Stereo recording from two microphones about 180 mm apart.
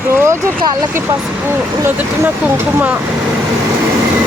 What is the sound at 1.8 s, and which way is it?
Speech, 10° right (ahead or behind).